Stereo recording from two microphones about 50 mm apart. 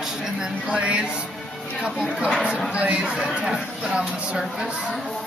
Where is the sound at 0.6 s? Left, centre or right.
Right.